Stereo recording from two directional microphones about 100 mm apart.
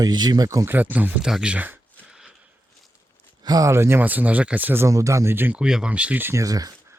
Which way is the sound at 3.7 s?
25° right (ahead or behind).